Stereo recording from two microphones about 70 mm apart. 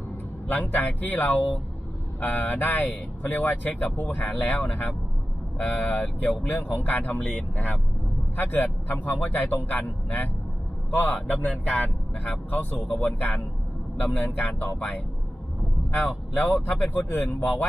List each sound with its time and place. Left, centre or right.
0.5 s speech: left
16.3 s speech: left